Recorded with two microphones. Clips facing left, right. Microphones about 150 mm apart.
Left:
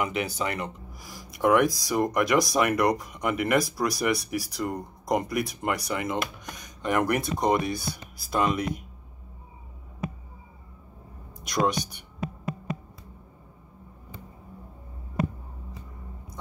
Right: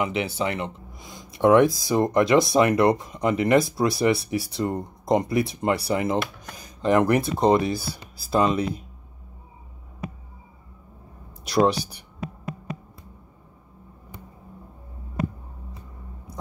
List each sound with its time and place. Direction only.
0.0 s speech: 25° right (ahead or behind)
11.4 s speech: 30° right (ahead or behind)